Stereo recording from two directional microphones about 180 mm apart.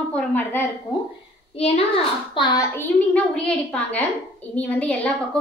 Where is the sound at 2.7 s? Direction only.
5° left (ahead or behind).